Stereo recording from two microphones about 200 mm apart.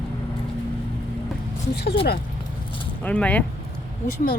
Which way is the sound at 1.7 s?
55° left (ahead or behind).